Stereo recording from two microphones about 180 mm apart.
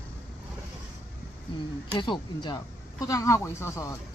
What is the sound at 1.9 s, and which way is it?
Speech, 25° left (ahead or behind).